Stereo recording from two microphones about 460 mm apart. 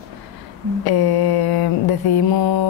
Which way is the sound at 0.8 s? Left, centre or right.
Left.